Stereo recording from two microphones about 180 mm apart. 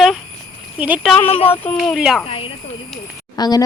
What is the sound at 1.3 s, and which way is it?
Speech, 30° left (ahead or behind).